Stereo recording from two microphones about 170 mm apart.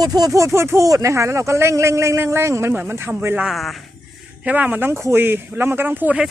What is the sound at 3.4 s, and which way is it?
Speech, centre (ahead or behind).